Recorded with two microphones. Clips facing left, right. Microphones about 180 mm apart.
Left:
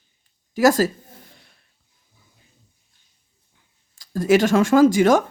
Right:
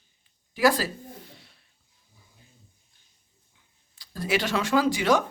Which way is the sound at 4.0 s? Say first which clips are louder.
Left 11 dB; 45° left (ahead or behind).